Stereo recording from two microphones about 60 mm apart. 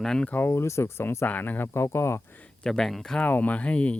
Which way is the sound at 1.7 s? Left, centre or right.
Left.